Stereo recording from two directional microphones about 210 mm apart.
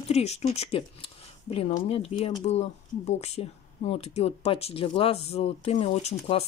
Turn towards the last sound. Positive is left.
turn(degrees=30)  # may be behind; listen again after turning